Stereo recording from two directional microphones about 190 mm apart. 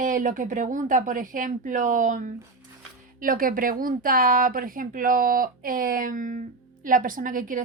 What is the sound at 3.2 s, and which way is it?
Speech, 45° right (ahead or behind).